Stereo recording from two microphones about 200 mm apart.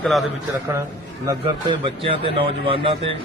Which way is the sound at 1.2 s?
15° right (ahead or behind).